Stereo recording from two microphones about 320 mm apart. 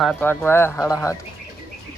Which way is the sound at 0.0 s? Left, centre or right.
Centre.